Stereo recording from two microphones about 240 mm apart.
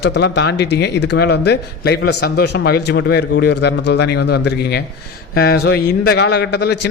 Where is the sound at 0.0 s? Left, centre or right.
Left.